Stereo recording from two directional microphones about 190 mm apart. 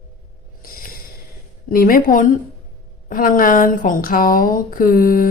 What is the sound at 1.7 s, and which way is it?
Speech, 50° left (ahead or behind).